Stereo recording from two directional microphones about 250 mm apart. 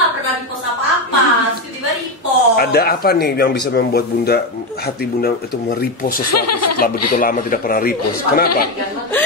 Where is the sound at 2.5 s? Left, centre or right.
Left.